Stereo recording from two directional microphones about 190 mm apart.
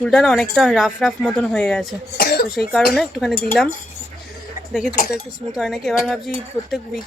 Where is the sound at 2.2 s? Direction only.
55° left (ahead or behind).